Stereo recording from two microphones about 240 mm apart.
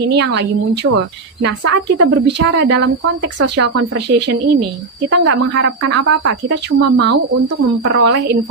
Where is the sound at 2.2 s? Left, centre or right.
Right.